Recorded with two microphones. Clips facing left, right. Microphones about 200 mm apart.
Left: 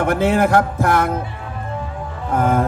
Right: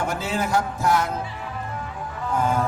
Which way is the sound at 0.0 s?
60° left (ahead or behind).